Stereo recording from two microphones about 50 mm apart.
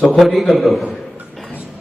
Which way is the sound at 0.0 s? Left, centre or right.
Centre.